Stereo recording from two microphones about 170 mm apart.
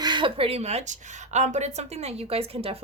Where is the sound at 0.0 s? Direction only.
25° right (ahead or behind).